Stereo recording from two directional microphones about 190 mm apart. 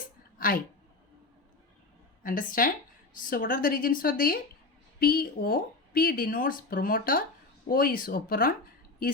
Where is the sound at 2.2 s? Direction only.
45° left (ahead or behind).